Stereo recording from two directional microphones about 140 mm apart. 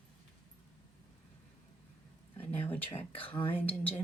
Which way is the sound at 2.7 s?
10° left (ahead or behind).